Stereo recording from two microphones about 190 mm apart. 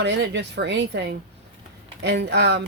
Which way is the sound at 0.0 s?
65° right (ahead or behind).